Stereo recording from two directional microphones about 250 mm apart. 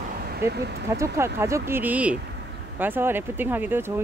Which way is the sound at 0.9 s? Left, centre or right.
Centre.